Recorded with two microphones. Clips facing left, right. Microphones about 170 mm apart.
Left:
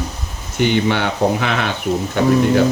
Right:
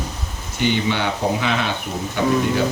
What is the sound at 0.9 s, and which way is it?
Speech, 55° left (ahead or behind).